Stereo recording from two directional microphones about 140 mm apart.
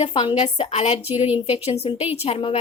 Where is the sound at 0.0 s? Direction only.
40° left (ahead or behind).